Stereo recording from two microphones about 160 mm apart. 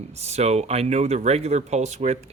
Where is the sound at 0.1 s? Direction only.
45° right (ahead or behind).